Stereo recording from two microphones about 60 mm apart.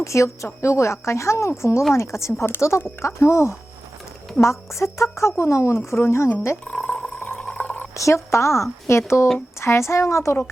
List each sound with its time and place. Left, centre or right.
0.0 s a woman's voice: left
6.7 s a sound: centre
7.3 s water: left
7.9 s a woman's voice: left